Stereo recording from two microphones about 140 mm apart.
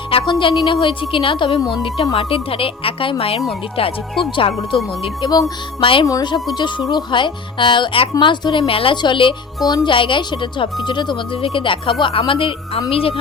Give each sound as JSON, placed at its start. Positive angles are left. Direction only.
{"t": 0.1, "sound": "a woman's voice", "side_deg": 35}